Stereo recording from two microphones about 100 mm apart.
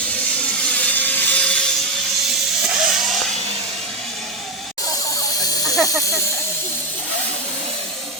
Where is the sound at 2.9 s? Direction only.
Centre (ahead or behind).